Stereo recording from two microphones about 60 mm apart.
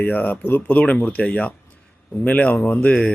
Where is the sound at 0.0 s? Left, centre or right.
Left.